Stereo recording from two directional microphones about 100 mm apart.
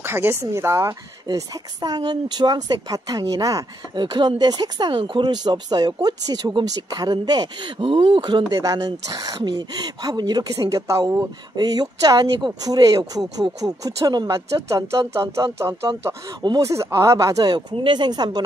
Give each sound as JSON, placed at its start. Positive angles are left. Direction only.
{"t": 0.0, "sound": "speech", "side_deg": -25}
{"t": 1.2, "sound": "speech", "side_deg": -40}
{"t": 3.9, "sound": "speech", "side_deg": -50}
{"t": 7.8, "sound": "speech", "side_deg": -60}
{"t": 11.5, "sound": "speech", "side_deg": -40}